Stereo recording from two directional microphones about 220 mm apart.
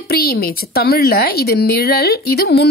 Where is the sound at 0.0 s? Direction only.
45° left (ahead or behind).